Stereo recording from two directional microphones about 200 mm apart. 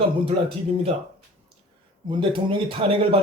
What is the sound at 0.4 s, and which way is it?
Speech, 30° right (ahead or behind).